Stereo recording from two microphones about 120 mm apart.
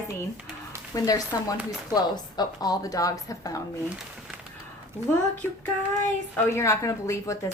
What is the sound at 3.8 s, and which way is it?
Speech, 5° right (ahead or behind).